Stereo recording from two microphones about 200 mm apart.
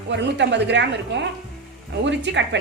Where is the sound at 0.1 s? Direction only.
65° right (ahead or behind).